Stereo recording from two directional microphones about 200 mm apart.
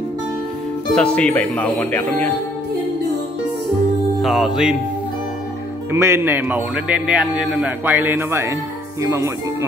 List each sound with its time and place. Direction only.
0.9 s speech: 5° left (ahead or behind)
4.2 s music: centre (ahead or behind)
5.9 s a man's voice: 15° right (ahead or behind)